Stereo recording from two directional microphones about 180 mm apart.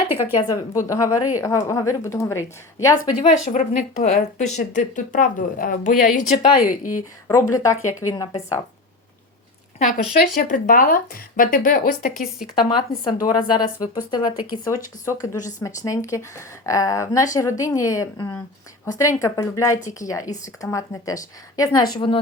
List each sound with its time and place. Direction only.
0.1 s a sound: 10° right (ahead or behind)
0.4 s a woman's voice: 15° left (ahead or behind)
3.2 s a woman's voice: 40° left (ahead or behind)
7.3 s a woman's voice: 15° left (ahead or behind)
7.8 s a woman's voice: 45° left (ahead or behind)
9.7 s a woman's voice: 50° left (ahead or behind)
12.1 s speech: centre (ahead or behind)
13.1 s a woman's voice: 20° left (ahead or behind)
15.4 s a woman's voice: 45° left (ahead or behind)
15.6 s a woman's voice: 20° left (ahead or behind)